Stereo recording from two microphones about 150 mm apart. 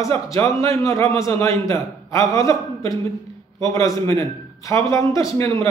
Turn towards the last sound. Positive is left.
turn(degrees=20)  # may be behind; listen again after turning